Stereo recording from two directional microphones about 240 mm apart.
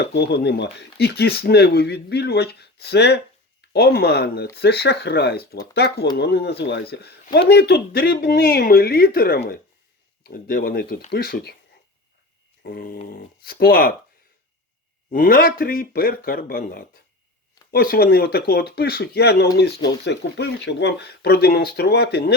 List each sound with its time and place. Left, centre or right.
0.0 s speech: left
12.6 s speech: left
15.1 s speech: left